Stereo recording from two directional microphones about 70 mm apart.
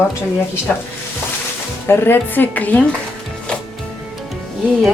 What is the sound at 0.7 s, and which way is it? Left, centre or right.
Speech, centre.